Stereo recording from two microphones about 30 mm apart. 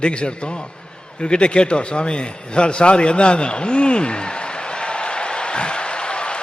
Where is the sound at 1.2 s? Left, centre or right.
Left.